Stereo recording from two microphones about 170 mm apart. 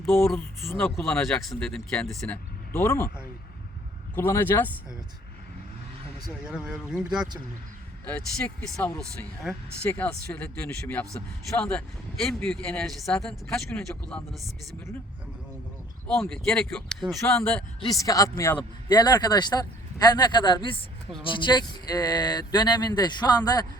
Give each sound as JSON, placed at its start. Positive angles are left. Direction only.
{"t": 0.3, "sound": "speech", "side_deg": 10}
{"t": 4.1, "sound": "speech", "side_deg": 10}
{"t": 6.4, "sound": "speech", "side_deg": -5}
{"t": 16.3, "sound": "speech", "side_deg": 5}
{"t": 17.8, "sound": "speech", "side_deg": 20}